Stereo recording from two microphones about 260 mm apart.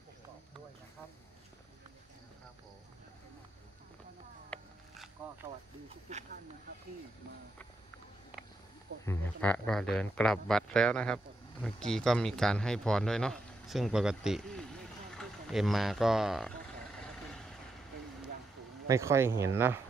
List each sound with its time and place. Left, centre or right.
4.5 s wild animals: centre
6.1 s speech: right
9.0 s speech: centre
17.0 s vehicle: centre
18.9 s speech: centre